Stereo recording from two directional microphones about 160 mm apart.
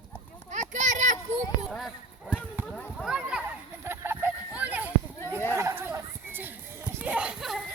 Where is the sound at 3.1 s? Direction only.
5° right (ahead or behind).